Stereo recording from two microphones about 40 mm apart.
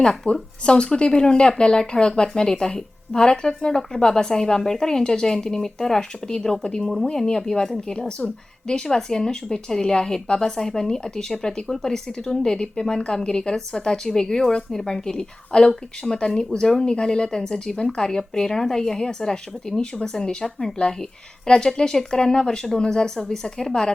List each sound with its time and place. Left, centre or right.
0.0 s speech: left